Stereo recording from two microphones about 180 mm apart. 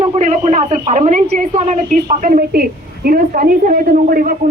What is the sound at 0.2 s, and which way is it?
A woman's voice, 40° right (ahead or behind).